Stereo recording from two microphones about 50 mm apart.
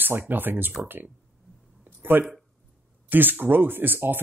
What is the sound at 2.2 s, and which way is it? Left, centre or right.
Speech, right.